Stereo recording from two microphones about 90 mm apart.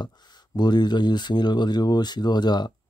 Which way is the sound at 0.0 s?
55° left (ahead or behind).